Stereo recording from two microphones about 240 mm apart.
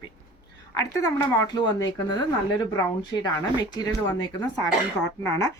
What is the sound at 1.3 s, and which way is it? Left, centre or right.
Speech, centre.